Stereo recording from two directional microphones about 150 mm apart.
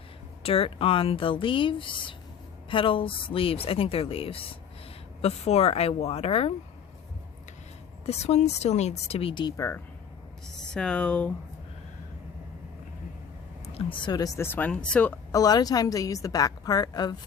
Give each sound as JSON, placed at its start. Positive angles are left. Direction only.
{"t": 0.4, "sound": "speech", "side_deg": 40}
{"t": 8.0, "sound": "speech", "side_deg": 45}
{"t": 10.6, "sound": "speech", "side_deg": 5}
{"t": 13.7, "sound": "speech", "side_deg": 35}
{"t": 15.3, "sound": "a woman's voice", "side_deg": 25}